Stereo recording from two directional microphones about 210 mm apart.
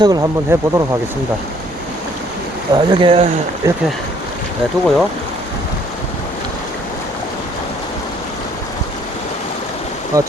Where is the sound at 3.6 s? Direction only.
15° right (ahead or behind).